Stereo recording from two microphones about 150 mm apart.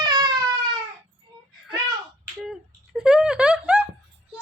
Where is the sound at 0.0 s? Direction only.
30° right (ahead or behind).